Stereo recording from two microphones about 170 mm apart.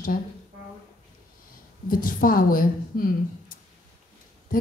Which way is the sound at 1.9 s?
55° left (ahead or behind).